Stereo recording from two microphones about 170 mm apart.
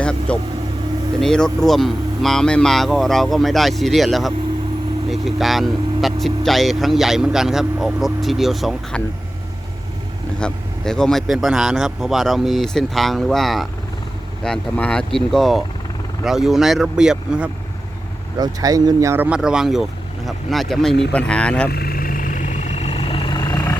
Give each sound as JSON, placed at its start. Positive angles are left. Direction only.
{"t": 0.0, "sound": "vehicle", "side_deg": 5}
{"t": 1.2, "sound": "speech", "side_deg": 5}
{"t": 10.4, "sound": "speech", "side_deg": 5}
{"t": 18.3, "sound": "speech", "side_deg": -20}
{"t": 21.7, "sound": "vehicle", "side_deg": 65}